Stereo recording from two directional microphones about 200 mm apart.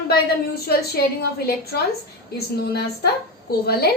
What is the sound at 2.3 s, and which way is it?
Speech, 55° left (ahead or behind).